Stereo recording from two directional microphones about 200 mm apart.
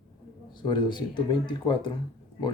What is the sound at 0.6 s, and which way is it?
Speech, 25° left (ahead or behind).